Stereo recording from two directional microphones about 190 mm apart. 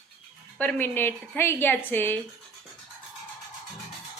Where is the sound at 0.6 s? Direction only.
10° left (ahead or behind).